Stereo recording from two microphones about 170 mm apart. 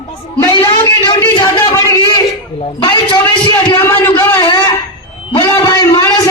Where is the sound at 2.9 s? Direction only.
20° left (ahead or behind).